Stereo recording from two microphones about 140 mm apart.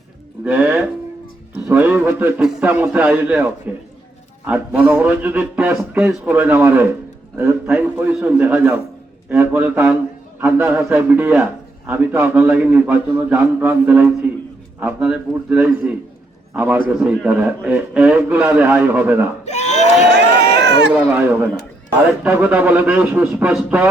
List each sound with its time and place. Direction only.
0.4 s music: 10° right (ahead or behind)
1.5 s a sound: 10° right (ahead or behind)
2.4 s a man's voice: 5° right (ahead or behind)
2.6 s a man's voice: 15° right (ahead or behind)
19.5 s a sound: 55° left (ahead or behind)
20.9 s a man's voice: 15° right (ahead or behind)